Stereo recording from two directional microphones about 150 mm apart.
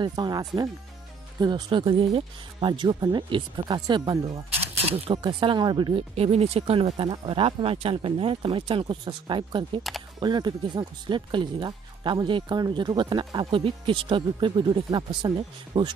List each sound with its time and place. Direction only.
0.0 s speech: 30° right (ahead or behind)